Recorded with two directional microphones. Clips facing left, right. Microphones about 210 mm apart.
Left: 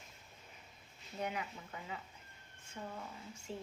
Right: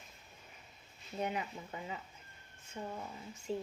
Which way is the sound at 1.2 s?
25° right (ahead or behind).